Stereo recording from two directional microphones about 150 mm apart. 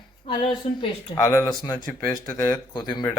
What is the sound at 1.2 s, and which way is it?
Speech, 20° left (ahead or behind).